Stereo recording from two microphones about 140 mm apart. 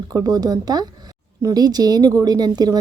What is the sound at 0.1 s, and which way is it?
A woman's voice, 25° right (ahead or behind).